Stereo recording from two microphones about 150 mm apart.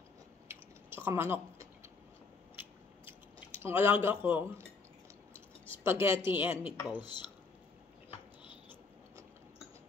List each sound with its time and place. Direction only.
0.5 s chewing: 15° right (ahead or behind)
3.1 s speech: 15° right (ahead or behind)
5.7 s a woman's voice: 15° right (ahead or behind)
6.6 s speech: 30° left (ahead or behind)